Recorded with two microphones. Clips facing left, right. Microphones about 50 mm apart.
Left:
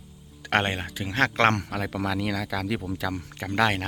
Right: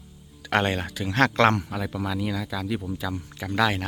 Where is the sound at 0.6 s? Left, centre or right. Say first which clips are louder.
Right 2 dB; left.